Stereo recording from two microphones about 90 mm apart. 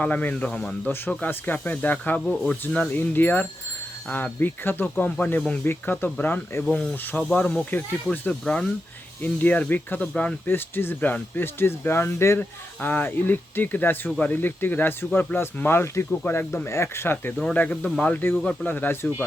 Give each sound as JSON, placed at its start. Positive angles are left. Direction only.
{"t": 0.0, "sound": "speech", "side_deg": 15}
{"t": 1.2, "sound": "speech", "side_deg": 20}
{"t": 6.7, "sound": "speech", "side_deg": 5}
{"t": 6.9, "sound": "speech", "side_deg": 20}
{"t": 10.4, "sound": "speech", "side_deg": 25}
{"t": 17.5, "sound": "speech", "side_deg": 15}